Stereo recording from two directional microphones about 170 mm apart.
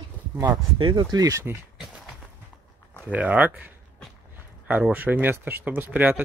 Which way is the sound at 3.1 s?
10° right (ahead or behind).